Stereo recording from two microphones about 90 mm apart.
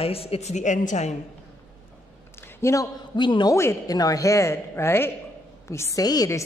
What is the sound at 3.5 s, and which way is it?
Speech, 30° left (ahead or behind).